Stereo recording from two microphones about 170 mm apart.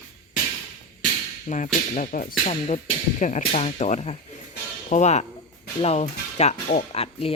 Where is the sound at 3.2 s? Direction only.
40° left (ahead or behind).